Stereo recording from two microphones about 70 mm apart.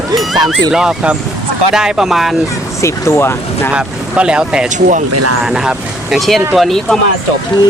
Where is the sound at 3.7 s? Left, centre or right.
Centre.